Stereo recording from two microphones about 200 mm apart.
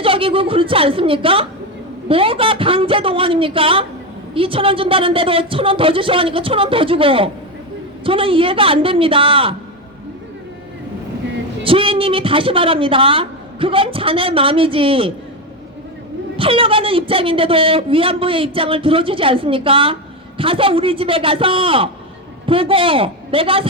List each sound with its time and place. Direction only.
0.0 s a woman's voice: 25° right (ahead or behind)
11.6 s a woman's voice: 25° right (ahead or behind)
16.4 s a woman's voice: 25° right (ahead or behind)